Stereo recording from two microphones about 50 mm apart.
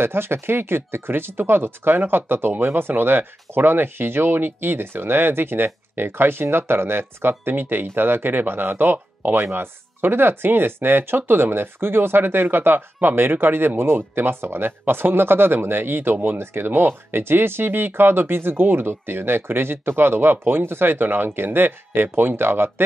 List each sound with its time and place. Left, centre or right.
0.0 s speech: right
9.4 s speech: right